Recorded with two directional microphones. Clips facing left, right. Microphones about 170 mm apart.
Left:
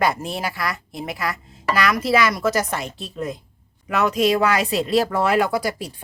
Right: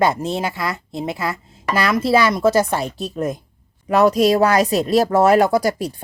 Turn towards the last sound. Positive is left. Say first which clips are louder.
# right 6 dB
turn(degrees=-40)  # may be behind; listen again after turning